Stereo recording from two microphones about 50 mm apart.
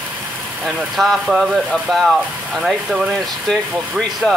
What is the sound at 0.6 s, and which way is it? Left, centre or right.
Speech, centre.